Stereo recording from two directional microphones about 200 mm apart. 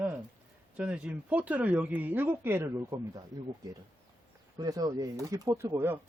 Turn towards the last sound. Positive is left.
turn(degrees=-10)  # may be behind; listen again after turning